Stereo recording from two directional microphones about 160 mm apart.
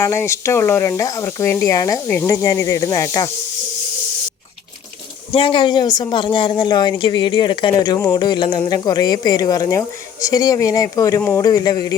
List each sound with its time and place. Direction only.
0.0 s speech: 15° left (ahead or behind)
5.3 s speech: 35° left (ahead or behind)